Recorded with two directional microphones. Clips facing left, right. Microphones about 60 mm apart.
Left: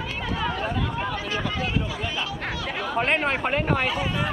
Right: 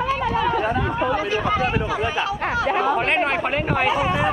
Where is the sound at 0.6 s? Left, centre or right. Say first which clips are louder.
Right 6 dB; right.